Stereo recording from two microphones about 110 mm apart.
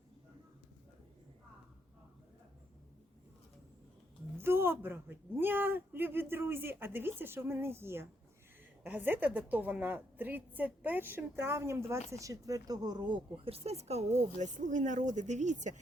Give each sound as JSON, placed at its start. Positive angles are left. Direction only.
{"t": 4.4, "sound": "a woman's voice", "side_deg": -20}
{"t": 13.3, "sound": "speech", "side_deg": -60}